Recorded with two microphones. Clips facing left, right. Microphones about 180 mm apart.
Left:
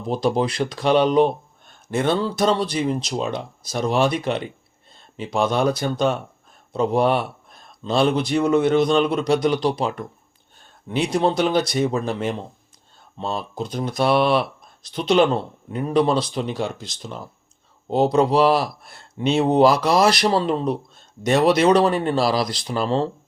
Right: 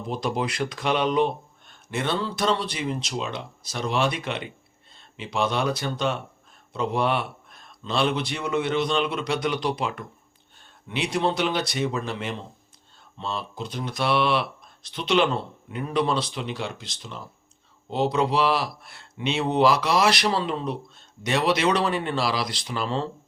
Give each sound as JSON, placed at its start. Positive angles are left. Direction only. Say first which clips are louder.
{"t": 0.1, "sound": "speech", "louder": "left 7 dB", "side_deg": 35}